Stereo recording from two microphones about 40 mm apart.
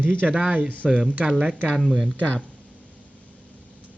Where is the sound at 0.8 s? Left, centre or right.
Right.